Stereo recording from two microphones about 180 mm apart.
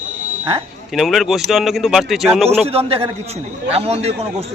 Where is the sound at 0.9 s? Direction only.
Centre (ahead or behind).